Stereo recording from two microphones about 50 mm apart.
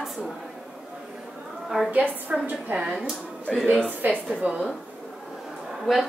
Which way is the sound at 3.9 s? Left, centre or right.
Right.